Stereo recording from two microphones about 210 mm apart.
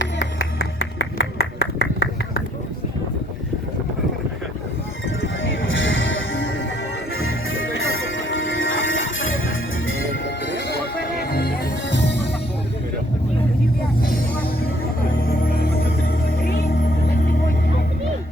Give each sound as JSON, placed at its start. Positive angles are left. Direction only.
{"t": 1.2, "sound": "clapping", "side_deg": 50}
{"t": 5.2, "sound": "music", "side_deg": 70}
{"t": 11.0, "sound": "music", "side_deg": 45}
{"t": 15.3, "sound": "music", "side_deg": 45}